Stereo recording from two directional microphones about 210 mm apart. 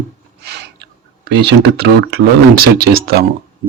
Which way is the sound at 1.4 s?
55° right (ahead or behind).